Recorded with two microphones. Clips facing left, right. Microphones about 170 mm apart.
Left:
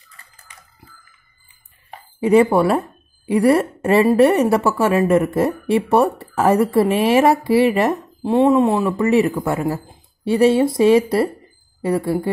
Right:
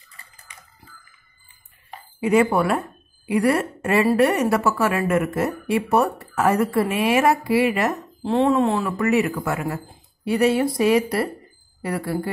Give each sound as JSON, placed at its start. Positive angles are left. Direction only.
{"t": 2.1, "sound": "a woman's voice", "side_deg": 30}
{"t": 8.2, "sound": "speech", "side_deg": 15}
{"t": 8.9, "sound": "a woman's voice", "side_deg": 30}